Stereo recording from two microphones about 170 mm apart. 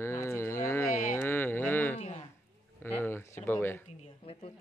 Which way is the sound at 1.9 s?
40° left (ahead or behind).